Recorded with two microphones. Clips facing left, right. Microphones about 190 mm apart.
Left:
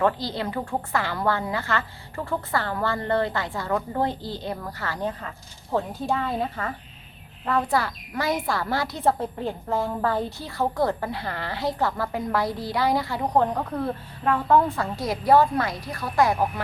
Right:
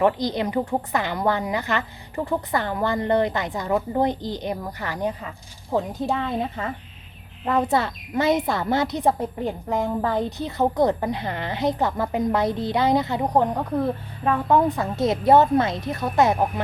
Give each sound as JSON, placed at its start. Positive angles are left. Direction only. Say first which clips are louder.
{"t": 0.0, "sound": "a woman's voice", "louder": "right 3 dB", "side_deg": -20}